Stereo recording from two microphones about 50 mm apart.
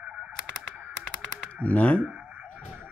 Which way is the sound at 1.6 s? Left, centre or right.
Left.